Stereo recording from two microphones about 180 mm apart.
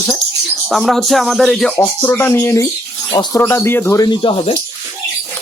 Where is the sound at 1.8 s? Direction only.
10° left (ahead or behind).